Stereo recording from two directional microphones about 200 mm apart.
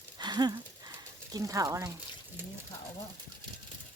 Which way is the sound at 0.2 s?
20° right (ahead or behind).